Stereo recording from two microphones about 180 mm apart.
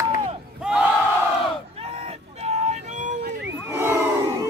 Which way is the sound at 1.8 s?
35° right (ahead or behind).